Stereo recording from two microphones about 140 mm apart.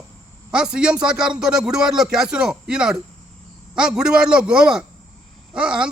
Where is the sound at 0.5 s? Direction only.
5° right (ahead or behind).